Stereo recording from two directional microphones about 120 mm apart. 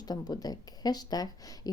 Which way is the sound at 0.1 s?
35° left (ahead or behind).